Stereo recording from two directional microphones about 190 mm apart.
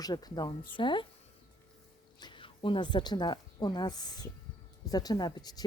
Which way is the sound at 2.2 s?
25° left (ahead or behind).